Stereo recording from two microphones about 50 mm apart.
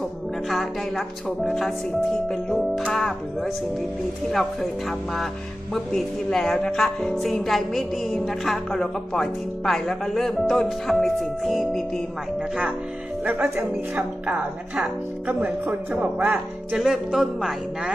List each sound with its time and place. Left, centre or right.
0.4 s speech: centre
4.3 s speech: centre
13.2 s speech: right
16.0 s speech: right
16.7 s music: centre